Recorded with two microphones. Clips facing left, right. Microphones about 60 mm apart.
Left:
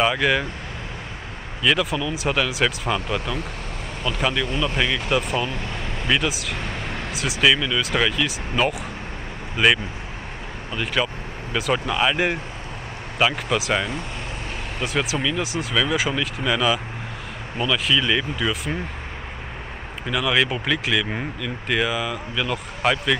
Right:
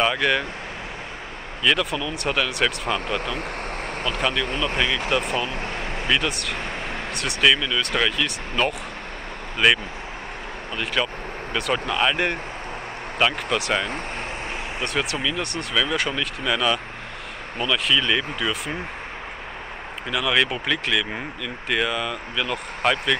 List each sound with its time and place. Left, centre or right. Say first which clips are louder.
0.0 s speech: left 1 dB; centre
1.6 s speech: left 1 dB; centre
4.2 s speech: left 2 dB; centre
5.5 s vehicle: right 1 dB; right
6.0 s speech: left 1 dB; centre
20.1 s speech: left 1 dB; centre